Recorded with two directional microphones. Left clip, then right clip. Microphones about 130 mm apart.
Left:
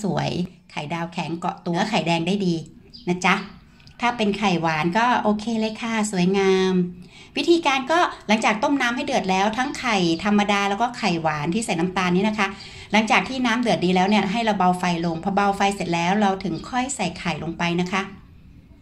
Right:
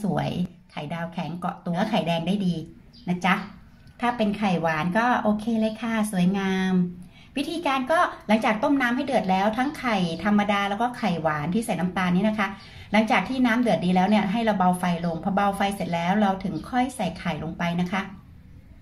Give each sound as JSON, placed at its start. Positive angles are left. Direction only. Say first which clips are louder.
{"t": 0.0, "sound": "a woman's voice", "louder": "left 3 dB", "side_deg": 15}